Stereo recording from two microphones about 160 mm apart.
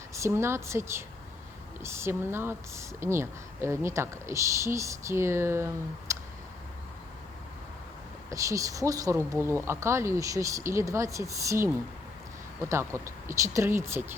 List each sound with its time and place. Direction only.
0.1 s a woman's voice: 15° right (ahead or behind)
8.3 s a woman's voice: 20° right (ahead or behind)